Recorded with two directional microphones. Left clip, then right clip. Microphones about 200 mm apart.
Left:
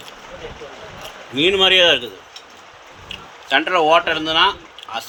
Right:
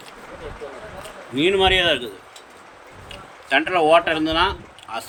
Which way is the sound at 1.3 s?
5° right (ahead or behind).